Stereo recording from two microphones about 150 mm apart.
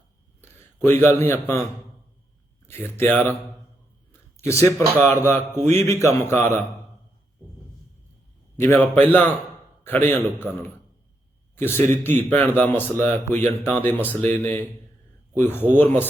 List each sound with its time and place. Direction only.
0.8 s speech: 15° left (ahead or behind)
2.6 s speech: 15° left (ahead or behind)
4.1 s a sound: 20° left (ahead or behind)
5.0 s speech: 15° left (ahead or behind)
8.5 s speech: 15° left (ahead or behind)
11.7 s speech: 15° left (ahead or behind)
13.9 s speech: 10° right (ahead or behind)
14.2 s speech: 15° left (ahead or behind)